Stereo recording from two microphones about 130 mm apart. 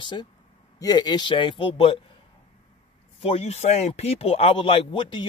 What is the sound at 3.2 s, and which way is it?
Speech, 50° left (ahead or behind).